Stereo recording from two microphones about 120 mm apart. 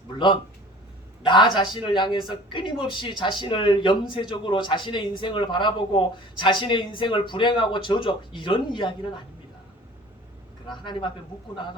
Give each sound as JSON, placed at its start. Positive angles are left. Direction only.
{"t": 1.2, "sound": "a man's voice", "side_deg": 40}
{"t": 10.7, "sound": "speech", "side_deg": 40}